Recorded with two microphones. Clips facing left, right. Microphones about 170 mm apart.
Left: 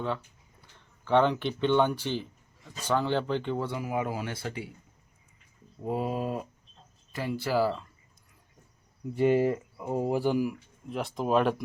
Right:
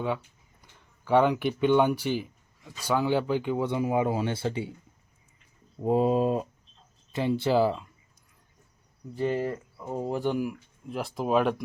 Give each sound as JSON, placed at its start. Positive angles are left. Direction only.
{"t": 0.6, "sound": "speech", "side_deg": -10}
{"t": 3.7, "sound": "speech", "side_deg": -25}
{"t": 5.8, "sound": "speech", "side_deg": -25}
{"t": 9.1, "sound": "speech", "side_deg": 15}